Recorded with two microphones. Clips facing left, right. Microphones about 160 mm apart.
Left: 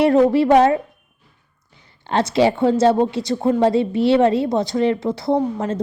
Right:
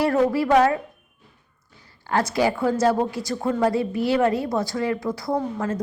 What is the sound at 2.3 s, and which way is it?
A woman's voice, 25° left (ahead or behind).